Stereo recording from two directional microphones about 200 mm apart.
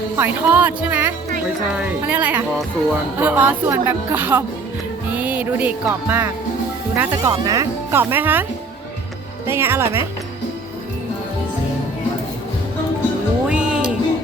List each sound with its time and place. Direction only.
0.2 s speech: 10° right (ahead or behind)
9.5 s speech: 10° right (ahead or behind)
13.5 s music: 5° right (ahead or behind)